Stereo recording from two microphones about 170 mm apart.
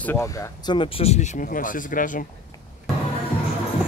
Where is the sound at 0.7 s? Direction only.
30° left (ahead or behind).